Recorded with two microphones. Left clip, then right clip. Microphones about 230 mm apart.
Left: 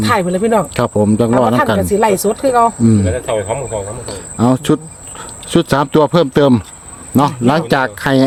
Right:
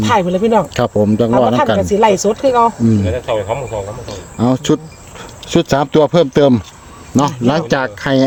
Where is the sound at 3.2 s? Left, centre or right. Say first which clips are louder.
Right 2 dB; left.